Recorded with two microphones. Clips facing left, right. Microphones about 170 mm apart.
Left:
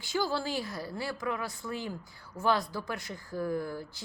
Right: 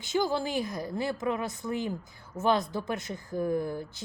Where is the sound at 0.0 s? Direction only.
20° right (ahead or behind).